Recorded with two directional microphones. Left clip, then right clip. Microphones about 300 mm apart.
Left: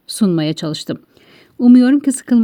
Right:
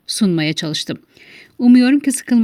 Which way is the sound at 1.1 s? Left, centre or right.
Right.